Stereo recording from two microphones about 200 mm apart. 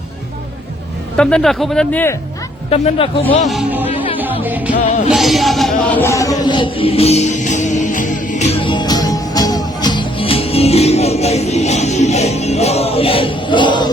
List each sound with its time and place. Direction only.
1.1 s speech: 5° left (ahead or behind)
2.6 s speech: 30° left (ahead or behind)
3.5 s music: 5° right (ahead or behind); by 13.8 s 25° left (ahead or behind)